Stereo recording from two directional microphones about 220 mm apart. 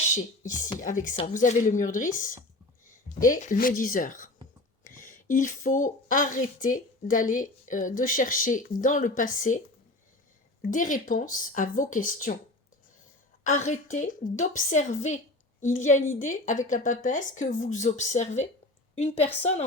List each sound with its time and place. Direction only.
0.8 s a woman's voice: 35° left (ahead or behind)
10.6 s a woman's voice: 35° left (ahead or behind)
13.7 s a woman's voice: 35° left (ahead or behind)